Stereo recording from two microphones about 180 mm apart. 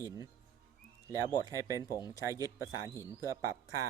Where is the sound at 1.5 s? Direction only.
20° right (ahead or behind).